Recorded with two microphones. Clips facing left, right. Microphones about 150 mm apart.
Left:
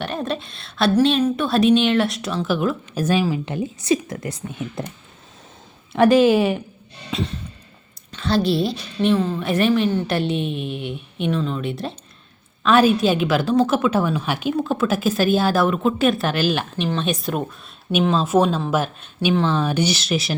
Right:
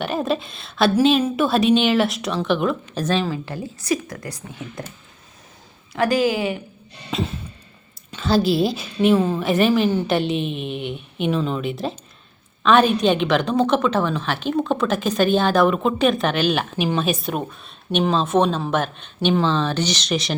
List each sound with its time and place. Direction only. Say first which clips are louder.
0.0 s a woman's voice: right 3 dB; centre (ahead or behind); by 4.8 s 25° left (ahead or behind)
5.9 s a woman's voice: left 5 dB; 25° left (ahead or behind)
7.1 s a woman's voice: right 1 dB; centre (ahead or behind)